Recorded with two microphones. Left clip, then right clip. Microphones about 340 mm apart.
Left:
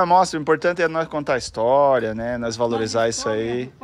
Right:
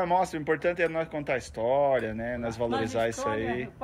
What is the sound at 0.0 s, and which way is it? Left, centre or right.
A man's voice, centre.